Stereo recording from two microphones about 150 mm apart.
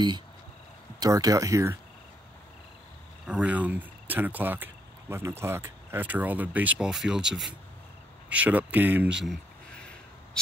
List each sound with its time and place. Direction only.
0.9 s speech: 25° right (ahead or behind)
3.3 s speech: 10° right (ahead or behind)
9.2 s a sound: centre (ahead or behind)